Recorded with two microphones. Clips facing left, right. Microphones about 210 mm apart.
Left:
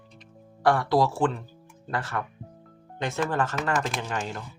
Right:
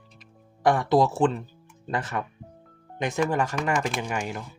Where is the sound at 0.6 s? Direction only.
20° right (ahead or behind).